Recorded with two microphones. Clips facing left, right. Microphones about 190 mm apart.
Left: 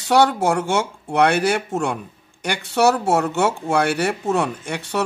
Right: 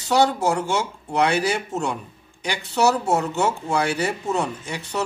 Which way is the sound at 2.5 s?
70° left (ahead or behind).